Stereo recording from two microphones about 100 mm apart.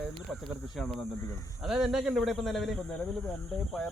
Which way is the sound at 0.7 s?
5° left (ahead or behind).